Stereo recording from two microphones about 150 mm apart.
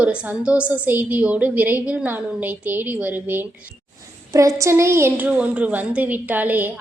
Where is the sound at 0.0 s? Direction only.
10° right (ahead or behind).